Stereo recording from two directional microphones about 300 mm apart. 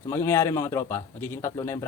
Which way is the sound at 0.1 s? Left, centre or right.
Centre.